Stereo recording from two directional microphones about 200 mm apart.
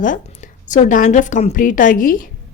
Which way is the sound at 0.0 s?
40° left (ahead or behind).